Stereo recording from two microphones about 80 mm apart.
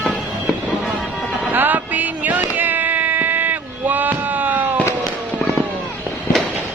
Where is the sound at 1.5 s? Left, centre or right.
Right.